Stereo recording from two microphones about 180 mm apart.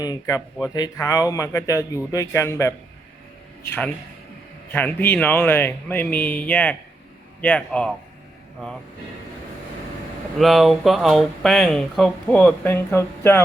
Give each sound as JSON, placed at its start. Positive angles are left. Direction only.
{"t": 0.0, "sound": "speech", "side_deg": 20}
{"t": 10.3, "sound": "speech", "side_deg": 0}